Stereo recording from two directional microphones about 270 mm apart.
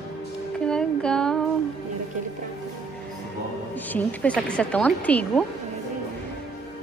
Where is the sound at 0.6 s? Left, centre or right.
Centre.